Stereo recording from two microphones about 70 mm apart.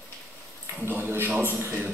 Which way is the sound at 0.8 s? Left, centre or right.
Right.